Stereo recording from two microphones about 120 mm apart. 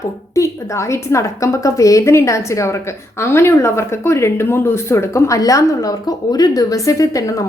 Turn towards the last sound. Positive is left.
turn(degrees=30)  # may be behind; listen again after turning